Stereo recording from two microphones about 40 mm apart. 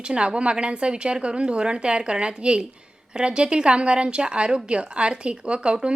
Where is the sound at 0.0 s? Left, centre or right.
Right.